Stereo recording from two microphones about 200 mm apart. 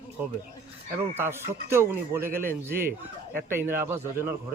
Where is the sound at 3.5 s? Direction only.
10° right (ahead or behind).